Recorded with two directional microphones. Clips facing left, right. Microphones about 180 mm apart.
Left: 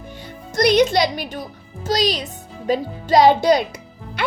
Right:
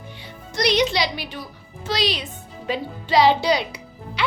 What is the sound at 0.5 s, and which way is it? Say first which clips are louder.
Speech: left 5 dB; 50° left (ahead or behind).